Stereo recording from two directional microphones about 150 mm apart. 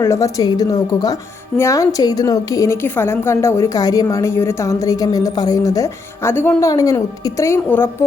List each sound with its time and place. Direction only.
0.0 s a woman's voice: 20° left (ahead or behind)